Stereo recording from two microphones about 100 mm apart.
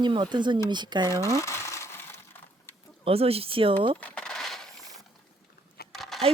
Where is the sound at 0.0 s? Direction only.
50° right (ahead or behind).